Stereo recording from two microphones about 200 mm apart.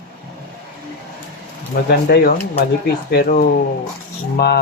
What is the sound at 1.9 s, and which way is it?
Speech, 50° left (ahead or behind).